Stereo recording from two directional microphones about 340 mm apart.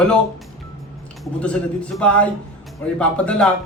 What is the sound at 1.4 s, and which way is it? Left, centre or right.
A man's voice, centre.